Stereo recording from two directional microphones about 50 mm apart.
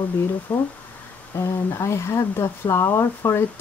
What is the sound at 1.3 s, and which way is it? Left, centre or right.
Speech, left.